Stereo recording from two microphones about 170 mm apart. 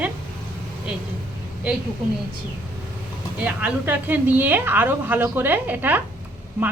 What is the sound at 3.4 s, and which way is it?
A woman's voice, 10° right (ahead or behind).